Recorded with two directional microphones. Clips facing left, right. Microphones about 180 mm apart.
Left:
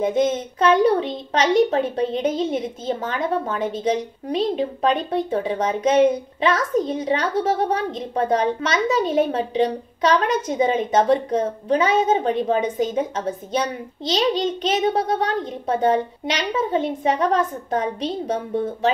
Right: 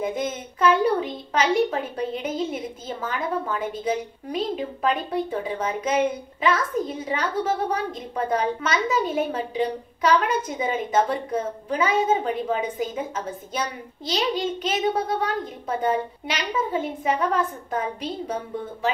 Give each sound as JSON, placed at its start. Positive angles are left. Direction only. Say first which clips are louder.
{"t": 0.0, "sound": "a woman's voice", "louder": "left 7 dB", "side_deg": 25}